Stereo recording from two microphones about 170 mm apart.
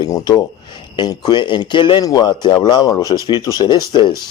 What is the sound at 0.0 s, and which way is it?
Speech, 20° left (ahead or behind).